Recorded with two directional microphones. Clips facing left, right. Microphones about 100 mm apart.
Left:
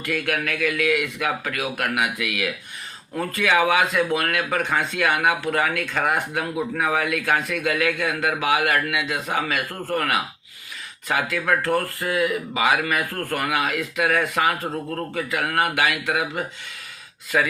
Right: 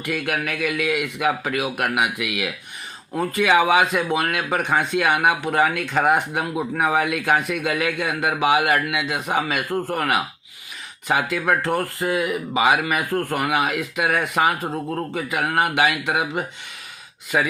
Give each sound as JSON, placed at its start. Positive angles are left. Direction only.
{"t": 0.0, "sound": "speech", "side_deg": -20}